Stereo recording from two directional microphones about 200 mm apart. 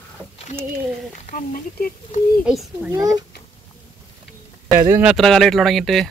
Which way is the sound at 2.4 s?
Centre (ahead or behind).